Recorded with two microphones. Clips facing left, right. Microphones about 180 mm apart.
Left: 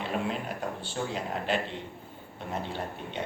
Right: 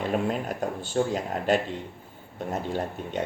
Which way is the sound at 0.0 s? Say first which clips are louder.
Right 5 dB; 45° right (ahead or behind).